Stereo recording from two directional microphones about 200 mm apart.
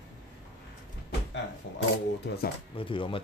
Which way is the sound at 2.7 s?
25° left (ahead or behind).